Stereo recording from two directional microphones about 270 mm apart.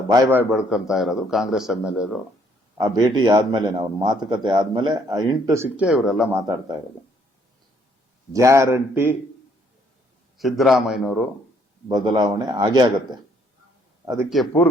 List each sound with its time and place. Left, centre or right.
0.1 s a man's voice: centre
2.7 s a man's voice: centre
8.3 s speech: centre
10.3 s a man's voice: centre
11.9 s a man's voice: centre